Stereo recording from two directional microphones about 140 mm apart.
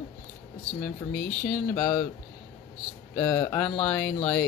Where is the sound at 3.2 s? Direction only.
15° left (ahead or behind).